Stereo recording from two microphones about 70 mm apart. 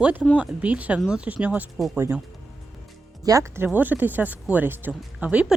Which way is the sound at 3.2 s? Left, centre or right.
Right.